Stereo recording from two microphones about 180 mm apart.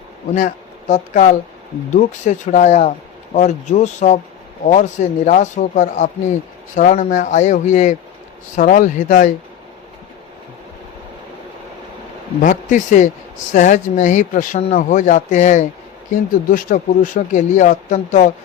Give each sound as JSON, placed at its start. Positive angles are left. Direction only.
{"t": 0.3, "sound": "speech", "side_deg": 40}
{"t": 12.4, "sound": "speech", "side_deg": 45}